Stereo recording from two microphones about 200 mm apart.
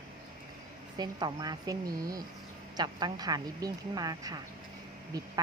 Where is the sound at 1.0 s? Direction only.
20° right (ahead or behind).